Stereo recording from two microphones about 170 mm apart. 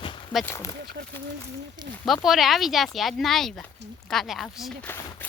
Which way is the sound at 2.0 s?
Centre (ahead or behind).